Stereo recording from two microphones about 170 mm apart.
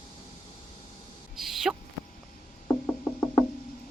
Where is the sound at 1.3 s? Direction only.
Centre (ahead or behind).